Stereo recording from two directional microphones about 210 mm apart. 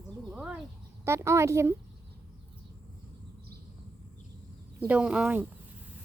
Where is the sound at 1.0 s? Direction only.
10° right (ahead or behind).